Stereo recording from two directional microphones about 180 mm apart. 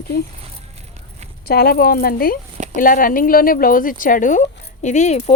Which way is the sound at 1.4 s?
60° left (ahead or behind).